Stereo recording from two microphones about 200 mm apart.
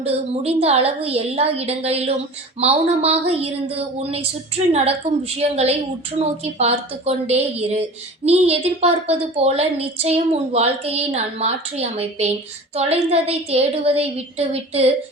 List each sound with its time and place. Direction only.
0.0 s a woman's voice: 30° right (ahead or behind)